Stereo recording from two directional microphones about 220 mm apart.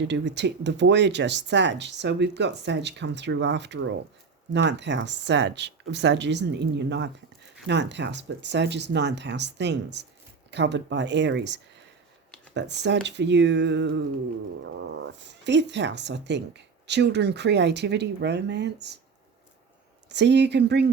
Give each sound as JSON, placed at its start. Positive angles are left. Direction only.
{"t": 0.0, "sound": "speech", "side_deg": -55}
{"t": 20.1, "sound": "speech", "side_deg": -50}